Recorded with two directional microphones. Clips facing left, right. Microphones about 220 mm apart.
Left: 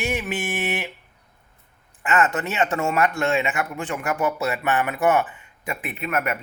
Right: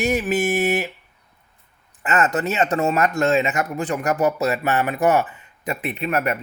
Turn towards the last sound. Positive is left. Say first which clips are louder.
# right 3 dB
turn(degrees=-35)  # may be behind; listen again after turning